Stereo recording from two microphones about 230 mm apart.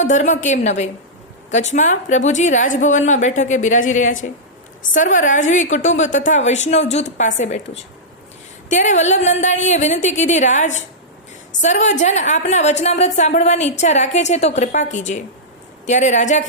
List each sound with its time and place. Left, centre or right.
0.0 s a woman's voice: left